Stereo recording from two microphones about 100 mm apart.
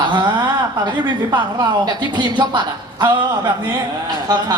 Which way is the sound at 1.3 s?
45° right (ahead or behind).